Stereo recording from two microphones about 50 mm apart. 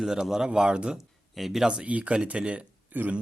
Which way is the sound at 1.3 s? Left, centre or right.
Centre.